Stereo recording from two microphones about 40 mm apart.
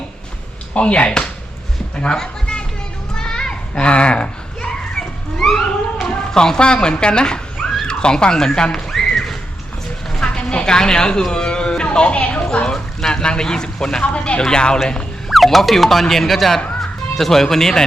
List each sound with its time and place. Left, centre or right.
0.7 s speech: left
2.1 s music: centre
3.2 s children playing: centre
5.5 s a sound: centre
6.1 s speech: centre
8.9 s a sound: centre
10.2 s a sound: left
12.7 s speech: centre
14.0 s speech: left
15.3 s speech: centre